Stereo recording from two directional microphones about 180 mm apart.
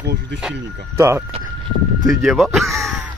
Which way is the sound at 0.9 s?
15° right (ahead or behind).